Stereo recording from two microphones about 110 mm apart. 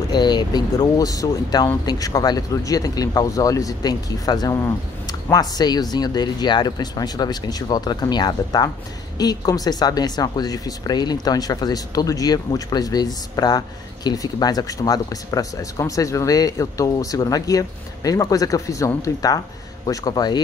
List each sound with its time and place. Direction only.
0.1 s speech: 40° left (ahead or behind)